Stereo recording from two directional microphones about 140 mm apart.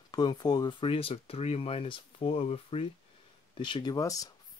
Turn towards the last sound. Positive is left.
turn(degrees=25)  # may be behind; listen again after turning